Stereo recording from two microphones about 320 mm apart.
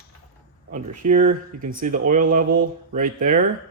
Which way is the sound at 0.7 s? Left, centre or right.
Right.